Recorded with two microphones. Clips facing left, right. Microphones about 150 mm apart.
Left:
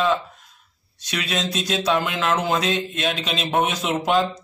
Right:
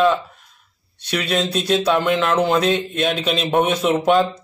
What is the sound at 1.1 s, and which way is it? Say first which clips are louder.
A man's voice: right 5 dB; centre (ahead or behind).